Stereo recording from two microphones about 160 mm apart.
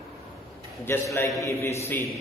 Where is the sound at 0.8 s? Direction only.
15° left (ahead or behind).